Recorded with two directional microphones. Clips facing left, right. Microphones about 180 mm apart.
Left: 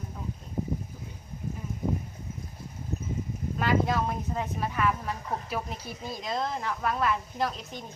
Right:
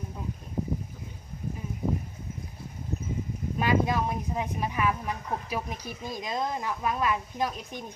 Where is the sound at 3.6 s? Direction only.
15° right (ahead or behind).